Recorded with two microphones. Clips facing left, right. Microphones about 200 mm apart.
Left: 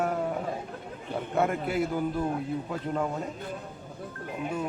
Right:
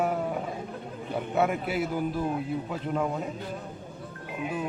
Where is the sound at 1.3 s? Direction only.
5° right (ahead or behind).